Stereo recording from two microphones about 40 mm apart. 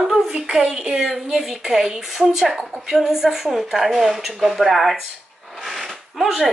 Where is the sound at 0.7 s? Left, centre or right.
Centre.